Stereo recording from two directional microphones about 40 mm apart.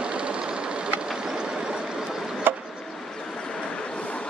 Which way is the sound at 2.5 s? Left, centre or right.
Right.